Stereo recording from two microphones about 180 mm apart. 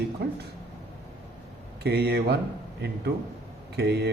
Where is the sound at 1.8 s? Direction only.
65° right (ahead or behind).